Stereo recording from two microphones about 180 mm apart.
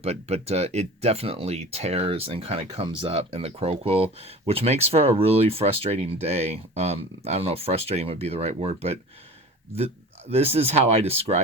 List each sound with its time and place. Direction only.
0.0 s speech: 35° right (ahead or behind)